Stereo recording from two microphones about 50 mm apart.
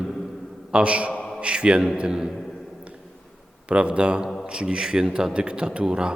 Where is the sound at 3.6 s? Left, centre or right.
Right.